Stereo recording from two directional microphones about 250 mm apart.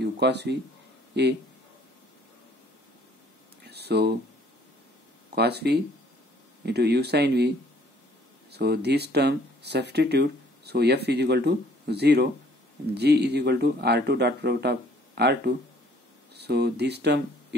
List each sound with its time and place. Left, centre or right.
0.0 s speech: right
3.6 s a sound: right
5.3 s speech: right